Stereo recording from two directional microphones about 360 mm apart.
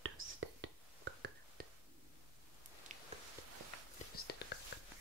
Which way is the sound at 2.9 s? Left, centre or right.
Centre.